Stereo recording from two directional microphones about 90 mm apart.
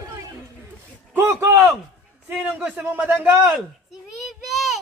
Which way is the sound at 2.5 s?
20° right (ahead or behind).